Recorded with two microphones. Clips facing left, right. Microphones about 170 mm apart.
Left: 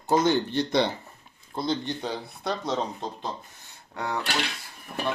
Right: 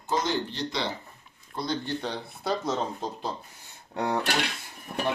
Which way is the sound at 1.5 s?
25° left (ahead or behind).